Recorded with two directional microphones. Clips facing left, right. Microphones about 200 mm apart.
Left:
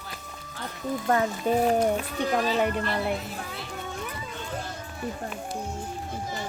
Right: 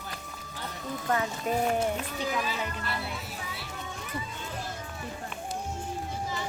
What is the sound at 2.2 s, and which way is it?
Speech, 55° left (ahead or behind).